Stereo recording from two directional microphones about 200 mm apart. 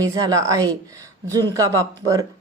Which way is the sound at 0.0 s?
15° right (ahead or behind).